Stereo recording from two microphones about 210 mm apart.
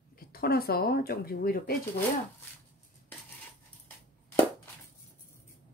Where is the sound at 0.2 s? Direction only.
45° left (ahead or behind).